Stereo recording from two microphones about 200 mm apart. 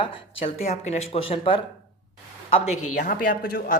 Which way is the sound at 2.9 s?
45° left (ahead or behind).